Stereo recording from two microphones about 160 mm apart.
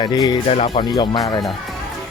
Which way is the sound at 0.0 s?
25° left (ahead or behind).